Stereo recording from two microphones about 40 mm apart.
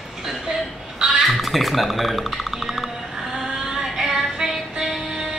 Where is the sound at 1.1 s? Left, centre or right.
Centre.